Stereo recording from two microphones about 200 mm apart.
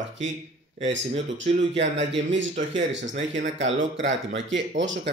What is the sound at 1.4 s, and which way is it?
Speech, 65° right (ahead or behind).